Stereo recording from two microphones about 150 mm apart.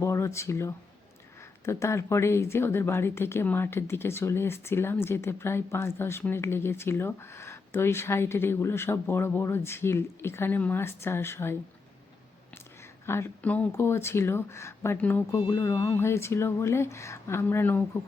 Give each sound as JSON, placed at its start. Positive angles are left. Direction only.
{"t": 0.0, "sound": "speech", "side_deg": 20}
{"t": 13.1, "sound": "speech", "side_deg": 15}